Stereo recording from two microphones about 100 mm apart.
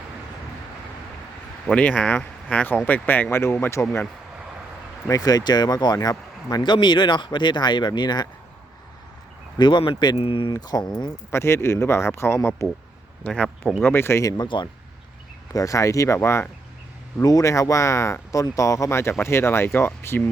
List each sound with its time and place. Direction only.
1.6 s speech: 15° left (ahead or behind)
5.0 s speech: 40° left (ahead or behind)
9.6 s speech: 50° left (ahead or behind)
10.2 s speech: 60° left (ahead or behind)
10.5 s speech: 40° left (ahead or behind)
11.3 s speech: 25° left (ahead or behind)
13.2 s speech: 10° left (ahead or behind)
13.8 s speech: 25° left (ahead or behind)
14.3 s speech: 50° left (ahead or behind)
15.5 s speech: 35° left (ahead or behind)
17.2 s speech: 35° left (ahead or behind)